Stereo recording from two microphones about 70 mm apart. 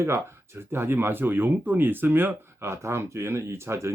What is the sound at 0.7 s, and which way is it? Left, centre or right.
Speech, right.